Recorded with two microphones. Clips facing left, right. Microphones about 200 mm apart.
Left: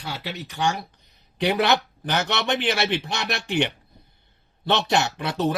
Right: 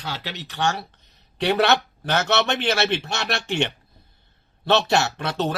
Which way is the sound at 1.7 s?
15° left (ahead or behind).